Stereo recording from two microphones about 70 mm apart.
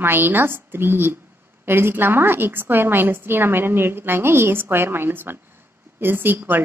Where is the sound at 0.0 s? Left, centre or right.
Right.